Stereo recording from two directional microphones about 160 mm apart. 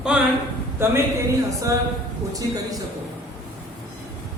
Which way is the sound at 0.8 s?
15° right (ahead or behind).